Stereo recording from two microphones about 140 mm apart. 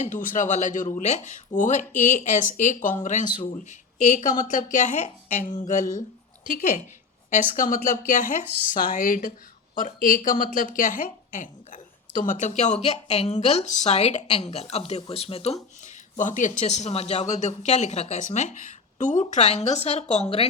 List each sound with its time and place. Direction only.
0.0 s a woman's voice: 65° left (ahead or behind); by 15.5 s 45° left (ahead or behind)
16.1 s a woman's voice: 65° left (ahead or behind)
19.2 s speech: 50° left (ahead or behind)